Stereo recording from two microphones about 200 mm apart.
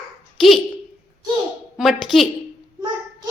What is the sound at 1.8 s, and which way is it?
Speech, centre (ahead or behind).